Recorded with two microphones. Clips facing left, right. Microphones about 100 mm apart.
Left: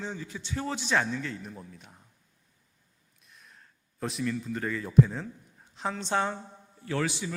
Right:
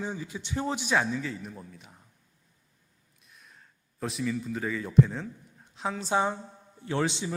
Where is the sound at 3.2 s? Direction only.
Centre (ahead or behind).